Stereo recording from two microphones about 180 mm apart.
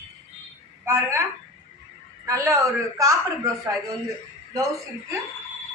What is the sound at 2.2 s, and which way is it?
A man's voice, 15° right (ahead or behind).